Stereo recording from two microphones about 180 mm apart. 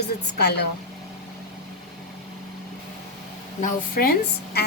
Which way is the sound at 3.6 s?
50° left (ahead or behind).